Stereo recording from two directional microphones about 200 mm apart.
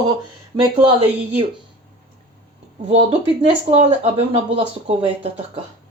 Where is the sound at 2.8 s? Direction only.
30° right (ahead or behind).